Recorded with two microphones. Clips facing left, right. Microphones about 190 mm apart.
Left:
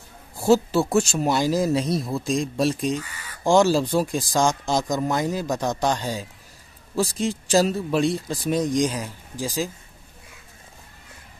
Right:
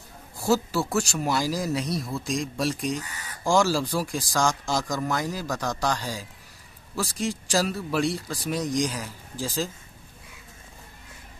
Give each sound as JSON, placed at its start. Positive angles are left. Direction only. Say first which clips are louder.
{"t": 0.4, "sound": "speech", "louder": "left 5 dB", "side_deg": 25}